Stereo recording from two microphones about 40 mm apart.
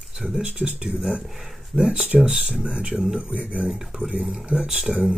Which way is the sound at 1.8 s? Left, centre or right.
Centre.